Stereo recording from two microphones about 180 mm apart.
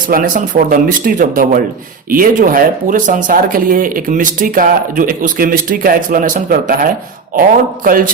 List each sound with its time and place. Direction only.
0.1 s speech: 45° right (ahead or behind)